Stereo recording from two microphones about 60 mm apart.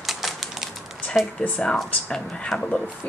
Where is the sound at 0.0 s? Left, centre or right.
Centre.